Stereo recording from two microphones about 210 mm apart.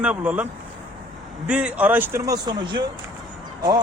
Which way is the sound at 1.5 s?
5° right (ahead or behind).